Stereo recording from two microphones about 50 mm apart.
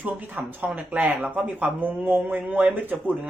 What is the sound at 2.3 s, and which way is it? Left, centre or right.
Speech, right.